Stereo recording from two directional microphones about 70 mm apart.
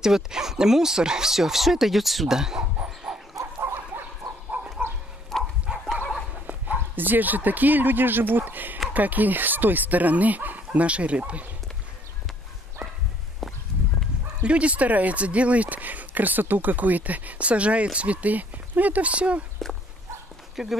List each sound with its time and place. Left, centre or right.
0.0 s speech: centre
2.8 s dog: centre
3.3 s dog: right
3.9 s fowl: right
4.5 s a sound: right
5.3 s dog: centre
5.7 s dog: centre
7.0 s speech: right
12.8 s dog: centre
13.4 s a sound: centre
14.4 s speech: centre
20.6 s speech: centre